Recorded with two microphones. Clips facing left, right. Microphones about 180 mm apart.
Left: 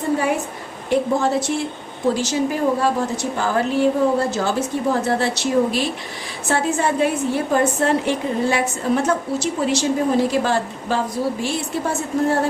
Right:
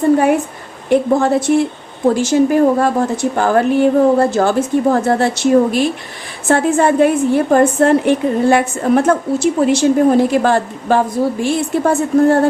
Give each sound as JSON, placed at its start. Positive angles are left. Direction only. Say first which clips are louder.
{"t": 0.9, "sound": "a woman's voice", "louder": "right 6 dB", "side_deg": -55}